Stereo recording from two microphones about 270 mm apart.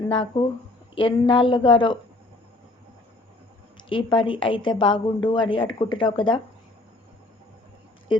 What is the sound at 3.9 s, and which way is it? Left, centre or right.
A woman's voice, centre.